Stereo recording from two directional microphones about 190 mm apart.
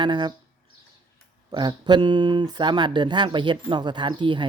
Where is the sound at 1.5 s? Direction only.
20° right (ahead or behind).